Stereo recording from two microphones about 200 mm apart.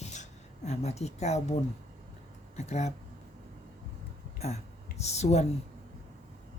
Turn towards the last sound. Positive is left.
turn(degrees=35)  # may be behind; listen again after turning